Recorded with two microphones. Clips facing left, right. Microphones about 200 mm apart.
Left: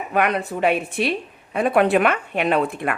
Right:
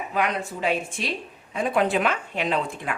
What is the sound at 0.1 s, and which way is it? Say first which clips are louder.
A woman's voice: left 6 dB; 65° left (ahead or behind).